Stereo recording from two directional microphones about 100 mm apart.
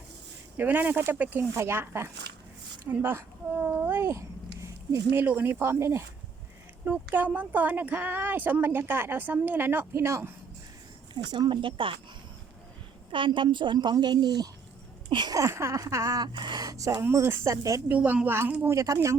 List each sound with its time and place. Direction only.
0.5 s speech: 20° right (ahead or behind)
4.6 s a sound: 35° right (ahead or behind)
5.1 s speech: 20° right (ahead or behind)
11.1 s a woman's voice: 50° right (ahead or behind)
13.1 s a woman's voice: 55° right (ahead or behind)
15.4 s speech: 30° right (ahead or behind)
17.8 s a woman's voice: 15° right (ahead or behind)
18.7 s speech: 30° right (ahead or behind)